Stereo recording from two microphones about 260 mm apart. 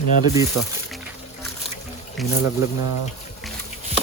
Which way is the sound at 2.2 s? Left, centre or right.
Centre.